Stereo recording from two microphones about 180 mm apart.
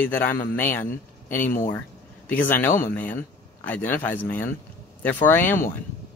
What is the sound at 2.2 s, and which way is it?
Speech, 10° left (ahead or behind).